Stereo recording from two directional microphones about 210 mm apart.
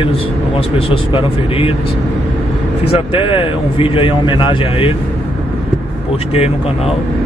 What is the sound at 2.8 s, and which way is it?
A man's voice, 25° left (ahead or behind).